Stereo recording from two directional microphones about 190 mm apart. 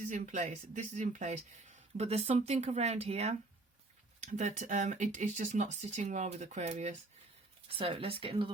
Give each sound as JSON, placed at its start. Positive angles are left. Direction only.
{"t": 0.1, "sound": "speech", "side_deg": -40}